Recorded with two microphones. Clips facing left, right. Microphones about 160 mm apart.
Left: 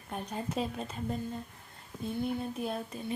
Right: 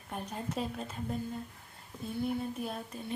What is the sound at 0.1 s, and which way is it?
Speech, centre (ahead or behind).